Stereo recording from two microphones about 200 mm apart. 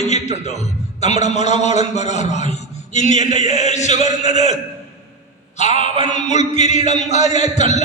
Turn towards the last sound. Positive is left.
turn(degrees=35)  # may be behind; listen again after turning